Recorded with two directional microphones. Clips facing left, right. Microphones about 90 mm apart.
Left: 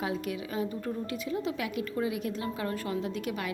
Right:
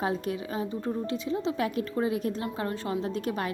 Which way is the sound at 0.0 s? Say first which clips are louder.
Right 3 dB; 35° right (ahead or behind).